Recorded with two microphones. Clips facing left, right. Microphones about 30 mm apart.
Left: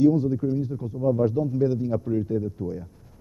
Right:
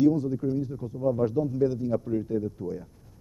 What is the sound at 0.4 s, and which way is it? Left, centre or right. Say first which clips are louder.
A man's voice: left 2 dB; centre.